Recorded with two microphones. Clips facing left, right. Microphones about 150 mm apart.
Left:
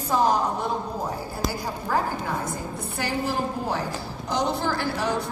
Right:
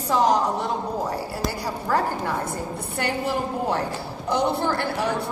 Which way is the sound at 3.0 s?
65° right (ahead or behind).